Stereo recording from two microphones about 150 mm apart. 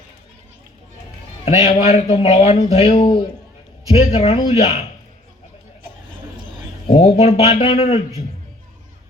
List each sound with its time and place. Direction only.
1.5 s a man's voice: 45° left (ahead or behind)
6.9 s a man's voice: 45° left (ahead or behind)